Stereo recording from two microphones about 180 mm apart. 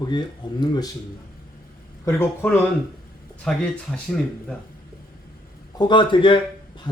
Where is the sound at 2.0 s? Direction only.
15° left (ahead or behind).